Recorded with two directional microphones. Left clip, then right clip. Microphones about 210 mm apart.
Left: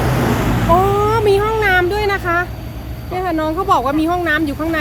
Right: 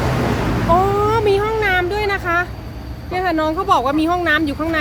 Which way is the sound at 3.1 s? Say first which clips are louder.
Even; centre (ahead or behind).